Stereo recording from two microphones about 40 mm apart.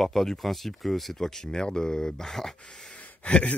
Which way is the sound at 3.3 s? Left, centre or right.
Left.